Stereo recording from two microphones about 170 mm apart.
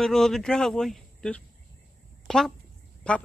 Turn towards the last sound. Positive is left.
turn(degrees=5)  # may be behind; listen again after turning